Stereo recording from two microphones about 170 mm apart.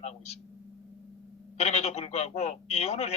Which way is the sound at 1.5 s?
40° left (ahead or behind).